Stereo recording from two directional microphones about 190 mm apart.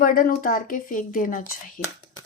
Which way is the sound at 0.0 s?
45° left (ahead or behind).